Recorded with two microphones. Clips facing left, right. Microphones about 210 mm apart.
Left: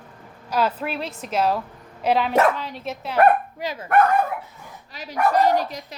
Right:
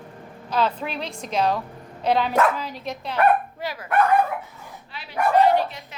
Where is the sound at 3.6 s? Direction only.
20° left (ahead or behind).